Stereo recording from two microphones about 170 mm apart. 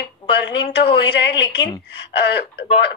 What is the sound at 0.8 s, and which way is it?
Speech, 85° left.